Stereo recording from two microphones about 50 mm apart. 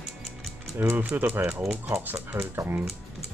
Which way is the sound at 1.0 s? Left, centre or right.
Right.